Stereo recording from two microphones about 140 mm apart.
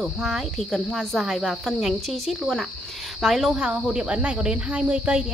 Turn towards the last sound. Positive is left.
turn(degrees=-5)  # may be behind; listen again after turning